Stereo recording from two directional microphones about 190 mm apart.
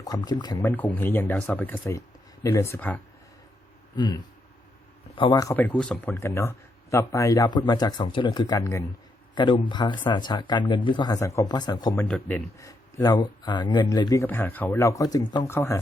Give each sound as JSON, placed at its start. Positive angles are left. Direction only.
{"t": 0.0, "sound": "speech", "side_deg": 20}
{"t": 3.9, "sound": "speech", "side_deg": 25}
{"t": 11.9, "sound": "speech", "side_deg": 5}
{"t": 12.5, "sound": "speech", "side_deg": 20}